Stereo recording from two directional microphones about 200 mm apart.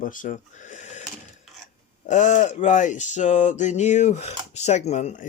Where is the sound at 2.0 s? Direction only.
35° left (ahead or behind).